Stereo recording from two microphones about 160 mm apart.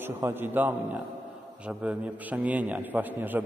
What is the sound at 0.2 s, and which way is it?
A man's voice, 15° right (ahead or behind).